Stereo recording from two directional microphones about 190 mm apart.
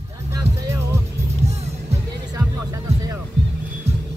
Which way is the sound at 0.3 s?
15° right (ahead or behind).